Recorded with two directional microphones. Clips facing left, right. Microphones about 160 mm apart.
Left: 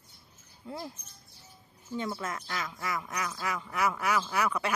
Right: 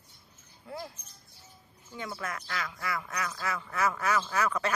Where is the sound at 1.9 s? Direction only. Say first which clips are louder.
Left 3 dB; 25° left (ahead or behind).